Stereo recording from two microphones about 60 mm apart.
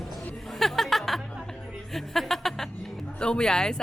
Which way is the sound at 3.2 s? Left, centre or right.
Centre.